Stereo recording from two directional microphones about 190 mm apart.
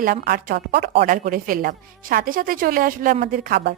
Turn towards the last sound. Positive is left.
turn(degrees=-55)  # may be behind; listen again after turning